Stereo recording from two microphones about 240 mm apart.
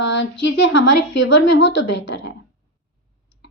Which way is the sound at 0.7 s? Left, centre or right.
Left.